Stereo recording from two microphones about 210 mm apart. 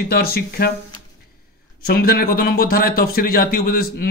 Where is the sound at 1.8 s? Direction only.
45° left (ahead or behind).